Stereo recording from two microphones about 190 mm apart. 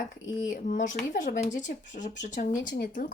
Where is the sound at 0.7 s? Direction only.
45° left (ahead or behind).